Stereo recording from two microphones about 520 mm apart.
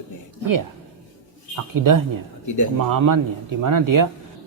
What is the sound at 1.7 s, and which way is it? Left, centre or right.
Speech, right.